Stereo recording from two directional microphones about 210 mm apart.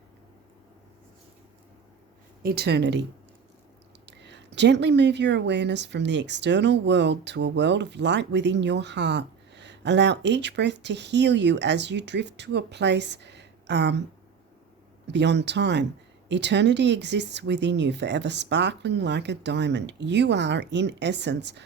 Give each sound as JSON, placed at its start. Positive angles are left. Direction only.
{"t": 2.4, "sound": "speech", "side_deg": -45}
{"t": 15.0, "sound": "speech", "side_deg": -55}